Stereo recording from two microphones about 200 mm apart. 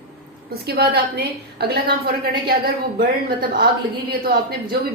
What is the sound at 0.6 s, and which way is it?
A woman's voice, 55° right (ahead or behind).